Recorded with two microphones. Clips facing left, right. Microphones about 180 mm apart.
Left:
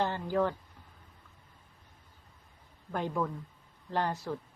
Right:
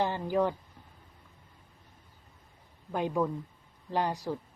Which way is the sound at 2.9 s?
15° right (ahead or behind).